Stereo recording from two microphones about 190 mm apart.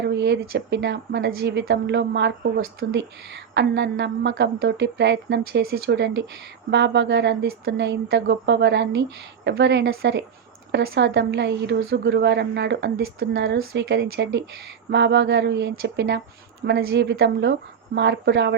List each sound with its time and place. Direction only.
0.0 s a woman's voice: 65° right (ahead or behind)